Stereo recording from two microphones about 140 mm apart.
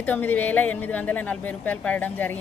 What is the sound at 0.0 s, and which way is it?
Speech, 10° left (ahead or behind).